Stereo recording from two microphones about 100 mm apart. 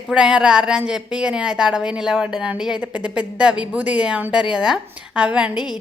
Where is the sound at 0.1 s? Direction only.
10° right (ahead or behind).